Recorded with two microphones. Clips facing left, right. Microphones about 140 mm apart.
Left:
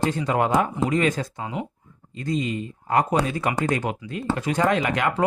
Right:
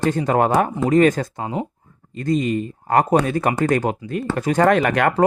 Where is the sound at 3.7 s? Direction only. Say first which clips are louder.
Right 6 dB; 40° right (ahead or behind); by 5.1 s 55° right (ahead or behind).